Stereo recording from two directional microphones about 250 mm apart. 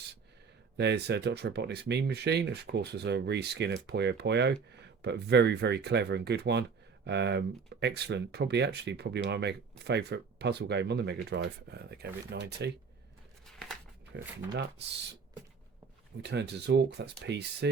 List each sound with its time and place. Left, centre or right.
0.8 s speech: right
13.4 s a sound: centre
14.1 s speech: right
16.2 s speech: right